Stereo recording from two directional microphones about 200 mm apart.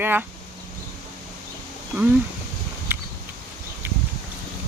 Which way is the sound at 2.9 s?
10° right (ahead or behind).